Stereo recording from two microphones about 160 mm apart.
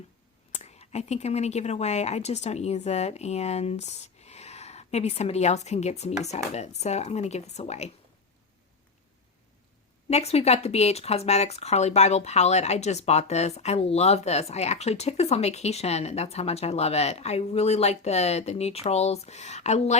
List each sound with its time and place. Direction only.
0.5 s speech: 40° left (ahead or behind)
10.1 s speech: 40° left (ahead or behind)